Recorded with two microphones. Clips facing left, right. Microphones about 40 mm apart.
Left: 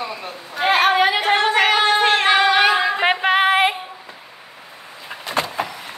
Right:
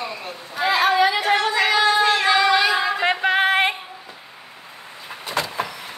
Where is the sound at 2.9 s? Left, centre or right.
Left.